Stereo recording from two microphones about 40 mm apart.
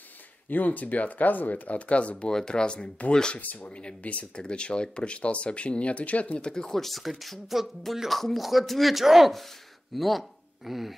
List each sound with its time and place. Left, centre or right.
0.5 s speech: left
1.9 s speech: left
2.3 s speech: left
3.3 s speech: left
4.4 s speech: left
6.4 s speech: centre
6.7 s speech: centre
9.0 s speech: centre